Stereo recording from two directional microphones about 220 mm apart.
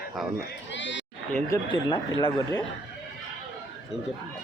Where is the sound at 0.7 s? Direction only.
55° left (ahead or behind).